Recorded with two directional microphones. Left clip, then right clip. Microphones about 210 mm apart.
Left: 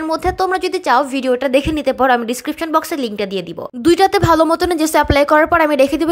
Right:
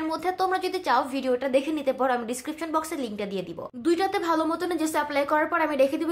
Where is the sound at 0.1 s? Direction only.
35° left (ahead or behind).